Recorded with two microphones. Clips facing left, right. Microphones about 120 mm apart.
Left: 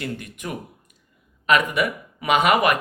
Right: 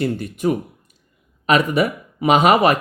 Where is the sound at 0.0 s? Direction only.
30° right (ahead or behind).